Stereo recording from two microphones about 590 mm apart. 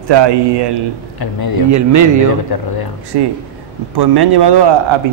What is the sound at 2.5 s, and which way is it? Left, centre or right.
Speech, left.